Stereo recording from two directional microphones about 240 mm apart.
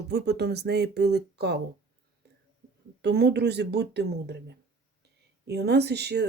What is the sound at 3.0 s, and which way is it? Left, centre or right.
Speech, right.